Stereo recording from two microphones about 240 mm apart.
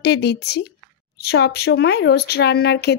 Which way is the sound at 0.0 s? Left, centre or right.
Left.